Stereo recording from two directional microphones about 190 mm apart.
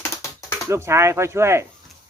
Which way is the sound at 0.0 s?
15° left (ahead or behind).